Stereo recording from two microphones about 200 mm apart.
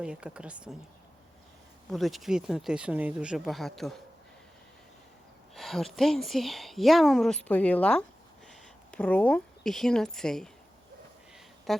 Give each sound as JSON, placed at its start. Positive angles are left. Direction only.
{"t": 0.0, "sound": "a woman's voice", "side_deg": -5}
{"t": 1.9, "sound": "a woman's voice", "side_deg": 0}
{"t": 5.5, "sound": "a woman's voice", "side_deg": 0}
{"t": 11.7, "sound": "a woman's voice", "side_deg": 0}